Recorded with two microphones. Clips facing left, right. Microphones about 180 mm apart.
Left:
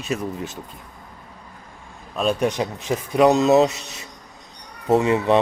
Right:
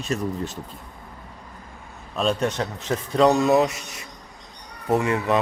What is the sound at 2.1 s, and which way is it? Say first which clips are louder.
A man's voice: left 2 dB; 5° left (ahead or behind).